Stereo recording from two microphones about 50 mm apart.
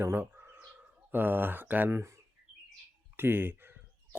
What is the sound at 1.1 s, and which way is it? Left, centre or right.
Speech, right.